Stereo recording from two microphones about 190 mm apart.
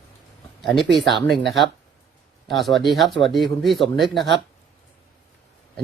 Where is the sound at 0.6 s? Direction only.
Centre (ahead or behind).